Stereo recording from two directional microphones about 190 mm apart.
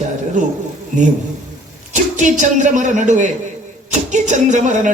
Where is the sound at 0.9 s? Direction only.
40° right (ahead or behind).